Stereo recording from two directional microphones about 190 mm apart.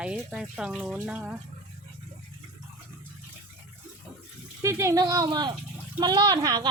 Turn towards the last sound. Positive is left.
turn(degrees=-20)  # may be behind; listen again after turning